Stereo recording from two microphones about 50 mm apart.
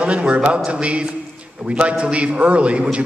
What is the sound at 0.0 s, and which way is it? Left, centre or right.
A man's voice, right.